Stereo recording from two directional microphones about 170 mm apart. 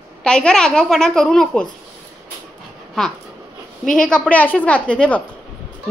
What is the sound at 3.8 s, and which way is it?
Speech, 50° left (ahead or behind).